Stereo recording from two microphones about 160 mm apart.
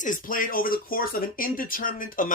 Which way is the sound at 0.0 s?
55° left (ahead or behind).